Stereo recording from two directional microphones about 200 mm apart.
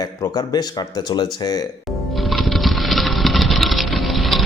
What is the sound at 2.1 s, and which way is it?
Patter, centre (ahead or behind).